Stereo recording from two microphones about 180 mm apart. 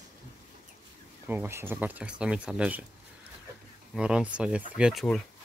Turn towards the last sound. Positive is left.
turn(degrees=-5)  # may be behind; listen again after turning